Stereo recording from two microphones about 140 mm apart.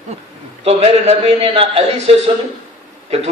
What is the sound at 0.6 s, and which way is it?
A man's voice, 45° right (ahead or behind).